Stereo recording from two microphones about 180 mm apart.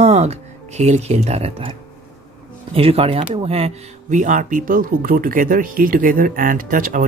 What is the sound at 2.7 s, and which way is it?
Speech, 30° right (ahead or behind).